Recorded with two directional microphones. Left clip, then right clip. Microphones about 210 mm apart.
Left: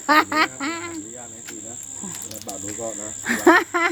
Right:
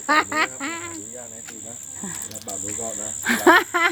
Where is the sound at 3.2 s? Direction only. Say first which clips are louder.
Right 1 dB; 10° right (ahead or behind).